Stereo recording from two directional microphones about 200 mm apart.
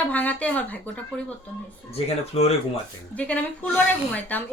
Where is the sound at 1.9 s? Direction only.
30° left (ahead or behind).